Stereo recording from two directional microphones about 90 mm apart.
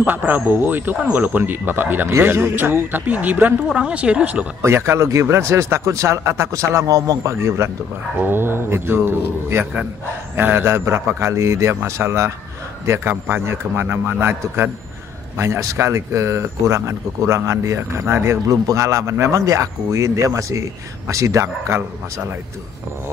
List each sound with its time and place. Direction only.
0.0 s a man's voice: 20° right (ahead or behind)
4.6 s a man's voice: 30° right (ahead or behind)